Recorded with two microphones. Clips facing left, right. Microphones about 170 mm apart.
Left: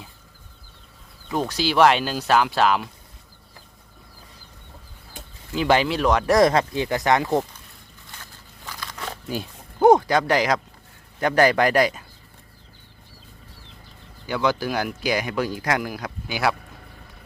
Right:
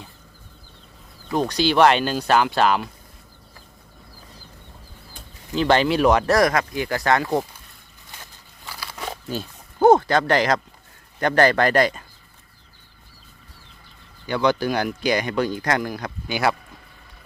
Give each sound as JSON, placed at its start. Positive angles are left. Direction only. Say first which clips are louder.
{"t": 1.3, "sound": "speech", "louder": "right 3 dB", "side_deg": 5}
{"t": 5.5, "sound": "speech", "louder": "right 2 dB", "side_deg": 10}
{"t": 6.0, "sound": "speech", "louder": "right 3 dB", "side_deg": -5}
{"t": 6.2, "sound": "speech", "louder": "left 1 dB", "side_deg": 20}
{"t": 8.7, "sound": "crumpling", "louder": "right 2 dB", "side_deg": -10}
{"t": 9.8, "sound": "speech", "louder": "even", "side_deg": 10}
{"t": 14.3, "sound": "speech", "louder": "right 3 dB", "side_deg": 5}